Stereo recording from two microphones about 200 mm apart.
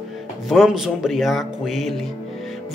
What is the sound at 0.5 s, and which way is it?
Speech, centre (ahead or behind).